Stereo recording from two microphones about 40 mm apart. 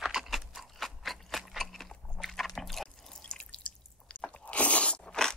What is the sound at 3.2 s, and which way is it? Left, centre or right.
Drip, left.